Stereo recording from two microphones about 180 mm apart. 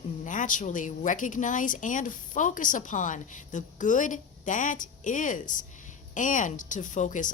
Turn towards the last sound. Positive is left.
turn(degrees=45)  # may be behind; listen again after turning